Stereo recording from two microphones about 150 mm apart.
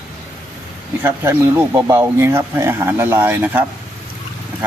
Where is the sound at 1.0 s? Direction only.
15° right (ahead or behind).